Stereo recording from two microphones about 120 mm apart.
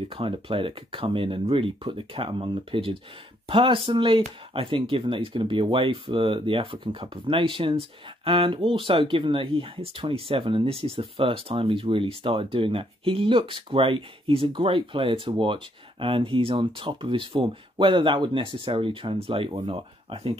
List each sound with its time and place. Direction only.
0.1 s speech: 50° right (ahead or behind)